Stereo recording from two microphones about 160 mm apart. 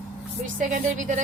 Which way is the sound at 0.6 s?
50° right (ahead or behind).